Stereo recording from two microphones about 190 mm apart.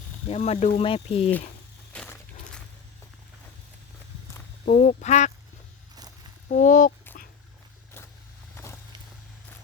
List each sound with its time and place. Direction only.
0.3 s speech: 35° left (ahead or behind)
1.9 s a sound: 5° left (ahead or behind)
4.6 s speech: 40° left (ahead or behind)
6.5 s speech: 40° left (ahead or behind)